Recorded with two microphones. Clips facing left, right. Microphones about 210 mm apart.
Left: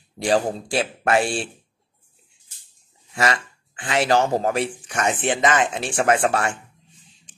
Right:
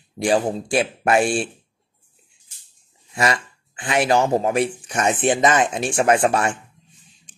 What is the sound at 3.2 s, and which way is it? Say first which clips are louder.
Dog: right 1 dB; 30° right (ahead or behind).